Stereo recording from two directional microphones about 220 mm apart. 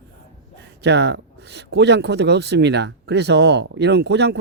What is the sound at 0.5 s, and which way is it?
Speech, 50° right (ahead or behind).